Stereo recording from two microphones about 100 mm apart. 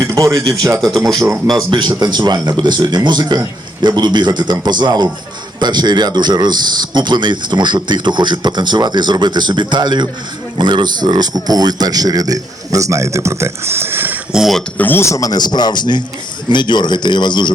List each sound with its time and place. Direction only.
0.0 s a man's voice: 35° right (ahead or behind)
0.8 s speech: 5° left (ahead or behind)
1.7 s a man's voice: 45° right (ahead or behind); by 14.2 s 20° right (ahead or behind)
14.3 s speech: centre (ahead or behind)
14.8 s speech: 20° left (ahead or behind); by 17.5 s 50° left (ahead or behind)